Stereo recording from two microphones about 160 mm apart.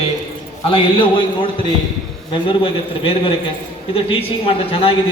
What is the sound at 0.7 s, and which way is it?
Speech, 30° left (ahead or behind).